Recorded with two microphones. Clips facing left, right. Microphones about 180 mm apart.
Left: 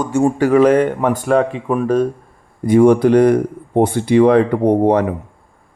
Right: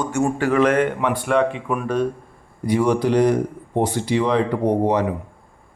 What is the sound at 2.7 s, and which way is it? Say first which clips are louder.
Speech: left 8 dB; 50° left (ahead or behind).